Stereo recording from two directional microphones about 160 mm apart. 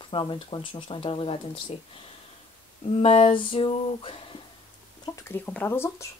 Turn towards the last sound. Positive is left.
turn(degrees=15)  # may be behind; listen again after turning